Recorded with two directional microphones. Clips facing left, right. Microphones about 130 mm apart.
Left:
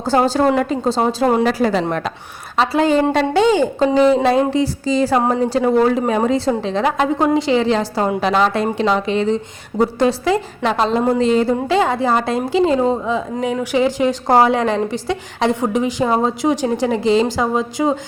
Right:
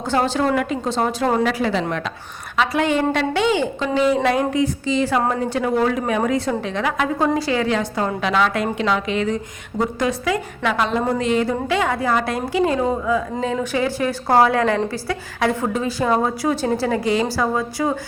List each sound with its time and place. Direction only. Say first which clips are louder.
0.4 s a woman's voice: left 4 dB; 30° left (ahead or behind)
1.5 s a woman's voice: left 4 dB; 40° left (ahead or behind); by 17.9 s 20° left (ahead or behind)